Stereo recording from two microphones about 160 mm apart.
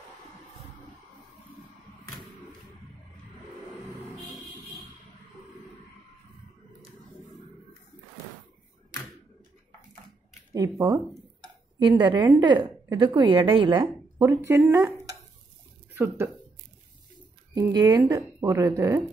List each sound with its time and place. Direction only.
10.5 s a woman's voice: 20° right (ahead or behind)
17.6 s a woman's voice: 25° right (ahead or behind)